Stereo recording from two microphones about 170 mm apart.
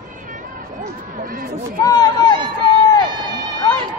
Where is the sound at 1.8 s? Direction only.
20° left (ahead or behind).